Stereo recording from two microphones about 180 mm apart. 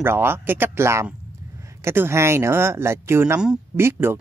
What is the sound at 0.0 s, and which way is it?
Speech, 10° right (ahead or behind).